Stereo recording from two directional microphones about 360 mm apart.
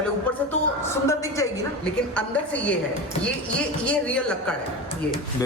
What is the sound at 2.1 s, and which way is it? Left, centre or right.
Speech, centre.